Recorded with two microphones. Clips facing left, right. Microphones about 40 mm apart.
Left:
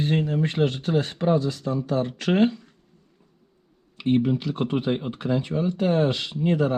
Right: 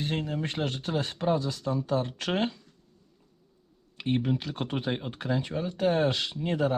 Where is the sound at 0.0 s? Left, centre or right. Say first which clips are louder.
Left 7 dB; centre.